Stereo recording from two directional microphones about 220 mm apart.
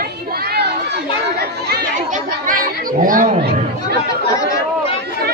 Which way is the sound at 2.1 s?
40° right (ahead or behind).